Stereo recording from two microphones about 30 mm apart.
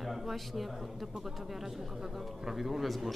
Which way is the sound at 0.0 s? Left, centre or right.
Centre.